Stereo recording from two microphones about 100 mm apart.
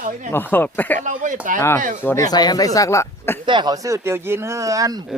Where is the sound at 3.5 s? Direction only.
50° right (ahead or behind).